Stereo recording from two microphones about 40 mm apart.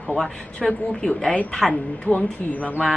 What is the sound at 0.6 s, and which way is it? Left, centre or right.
Speech, left.